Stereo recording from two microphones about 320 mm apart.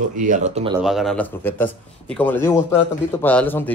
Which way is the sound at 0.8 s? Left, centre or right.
Centre.